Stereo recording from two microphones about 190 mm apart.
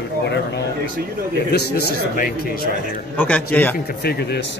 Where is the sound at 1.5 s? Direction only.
60° left (ahead or behind).